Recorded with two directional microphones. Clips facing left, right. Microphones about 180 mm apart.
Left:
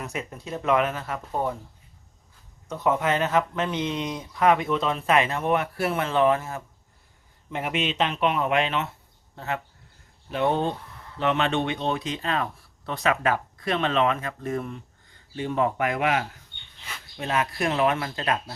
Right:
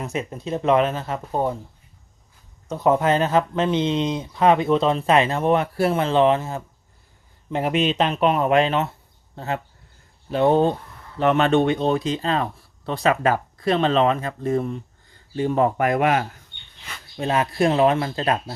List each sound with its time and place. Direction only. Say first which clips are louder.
0.0 s speech: right 6 dB; 25° right (ahead or behind)
2.6 s speech: right 5 dB; 35° right (ahead or behind)
17.2 s speech: right 6 dB; 30° right (ahead or behind)